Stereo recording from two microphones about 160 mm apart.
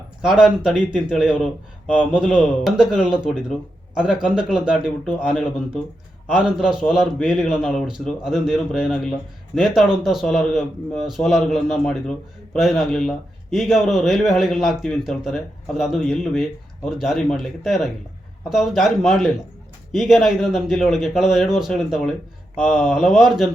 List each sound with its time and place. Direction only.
0.2 s a man's voice: 5° right (ahead or behind)